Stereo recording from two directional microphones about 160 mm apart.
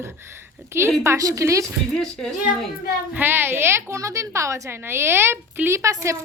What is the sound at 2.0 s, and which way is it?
Speech, centre (ahead or behind).